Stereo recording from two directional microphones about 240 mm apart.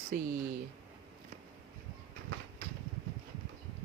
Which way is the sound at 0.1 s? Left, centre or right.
Right.